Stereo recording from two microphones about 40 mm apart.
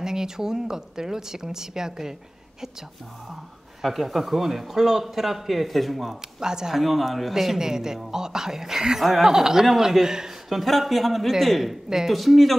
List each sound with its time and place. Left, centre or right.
0.0 s a woman's voice: centre
3.8 s a man's voice: centre
6.4 s a woman's voice: centre
6.7 s a man's voice: centre
7.5 s a woman's voice: centre
10.5 s a man's voice: centre